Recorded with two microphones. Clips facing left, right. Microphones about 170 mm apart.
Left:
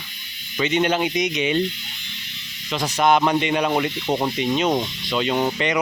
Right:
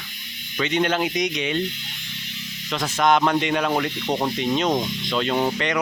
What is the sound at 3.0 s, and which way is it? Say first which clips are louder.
Rub: left 1 dB; 5° left (ahead or behind).